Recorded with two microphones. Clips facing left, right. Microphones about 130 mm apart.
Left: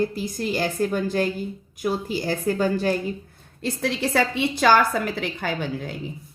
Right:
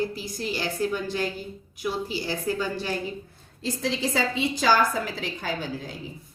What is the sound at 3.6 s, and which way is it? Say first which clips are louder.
A woman's voice: left 2 dB; 60° left (ahead or behind).